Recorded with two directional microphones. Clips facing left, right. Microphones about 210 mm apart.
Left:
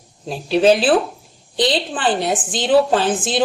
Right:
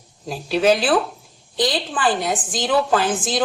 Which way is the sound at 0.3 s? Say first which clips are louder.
Left 3 dB; 25° left (ahead or behind).